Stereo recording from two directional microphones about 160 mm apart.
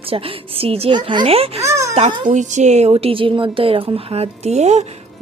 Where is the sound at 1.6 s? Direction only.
20° right (ahead or behind).